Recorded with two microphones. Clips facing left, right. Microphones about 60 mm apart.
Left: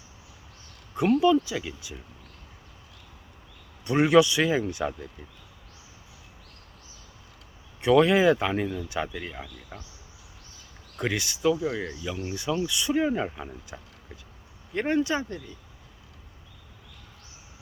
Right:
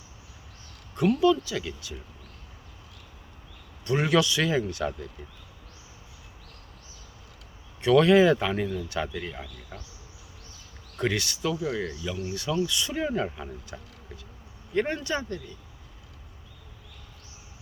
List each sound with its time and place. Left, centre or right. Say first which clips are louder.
1.0 s speech: left 1 dB; left
3.8 s speech: left 4 dB; centre
7.8 s speech: right 1 dB; centre
10.9 s speech: right 1 dB; centre